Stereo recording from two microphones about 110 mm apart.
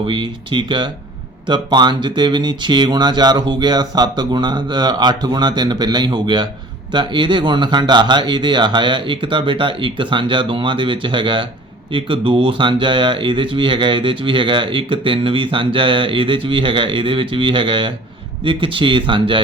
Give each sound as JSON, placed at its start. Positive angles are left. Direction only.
{"t": 0.0, "sound": "speech", "side_deg": -50}